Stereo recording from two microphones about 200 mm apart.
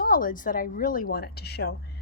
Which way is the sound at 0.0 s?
45° left (ahead or behind).